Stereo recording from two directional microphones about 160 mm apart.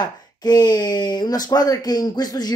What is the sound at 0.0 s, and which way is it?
Speech, 25° left (ahead or behind).